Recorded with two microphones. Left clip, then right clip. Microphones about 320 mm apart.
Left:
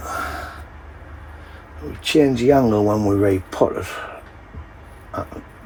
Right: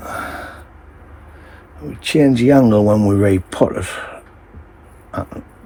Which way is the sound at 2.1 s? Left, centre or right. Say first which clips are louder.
Right 3 dB; right.